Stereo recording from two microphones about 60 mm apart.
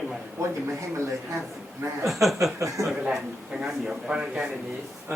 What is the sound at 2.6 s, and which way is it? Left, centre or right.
Speech, right.